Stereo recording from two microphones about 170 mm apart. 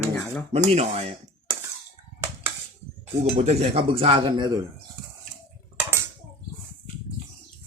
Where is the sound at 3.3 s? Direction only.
40° right (ahead or behind).